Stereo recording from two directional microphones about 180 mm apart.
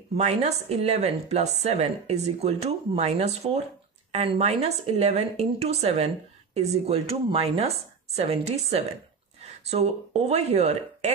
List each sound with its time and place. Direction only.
0.2 s speech: 35° right (ahead or behind)